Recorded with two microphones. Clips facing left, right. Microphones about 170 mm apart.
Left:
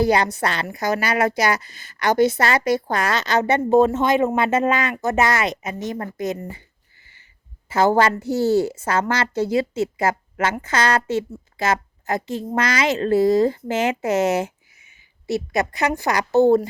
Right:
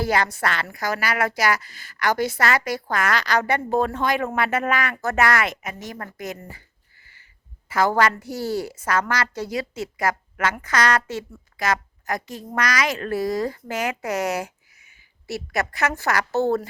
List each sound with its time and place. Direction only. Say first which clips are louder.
0.0 s a woman's voice: left 4 dB; 20° left (ahead or behind)